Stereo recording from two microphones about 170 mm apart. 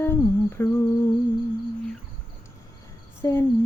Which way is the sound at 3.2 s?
15° left (ahead or behind).